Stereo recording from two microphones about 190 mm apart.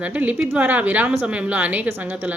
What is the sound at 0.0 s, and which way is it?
Speech, 10° right (ahead or behind).